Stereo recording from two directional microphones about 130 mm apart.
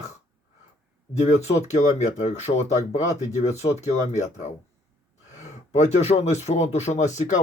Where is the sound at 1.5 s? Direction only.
60° left (ahead or behind).